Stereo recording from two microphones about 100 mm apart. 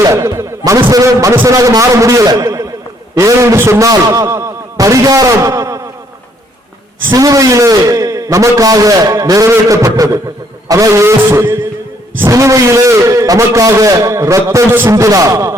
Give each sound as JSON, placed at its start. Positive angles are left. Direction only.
{"t": 0.0, "sound": "a man's voice", "side_deg": -35}
{"t": 7.1, "sound": "a man's voice", "side_deg": -35}